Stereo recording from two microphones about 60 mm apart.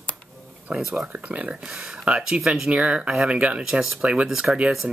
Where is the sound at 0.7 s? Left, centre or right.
Centre.